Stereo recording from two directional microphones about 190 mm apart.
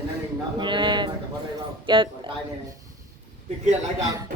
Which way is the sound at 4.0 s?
15° right (ahead or behind).